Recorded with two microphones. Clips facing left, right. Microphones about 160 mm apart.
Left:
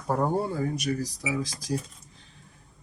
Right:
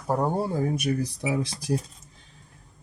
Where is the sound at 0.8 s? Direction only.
55° right (ahead or behind).